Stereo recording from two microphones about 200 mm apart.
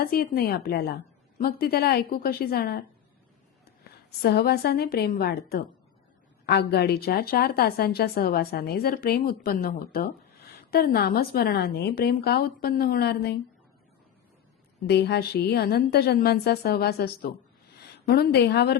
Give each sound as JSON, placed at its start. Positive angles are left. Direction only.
{"t": 0.0, "sound": "a woman's voice", "side_deg": 50}
{"t": 4.2, "sound": "a woman's voice", "side_deg": 55}
{"t": 14.8, "sound": "a woman's voice", "side_deg": 55}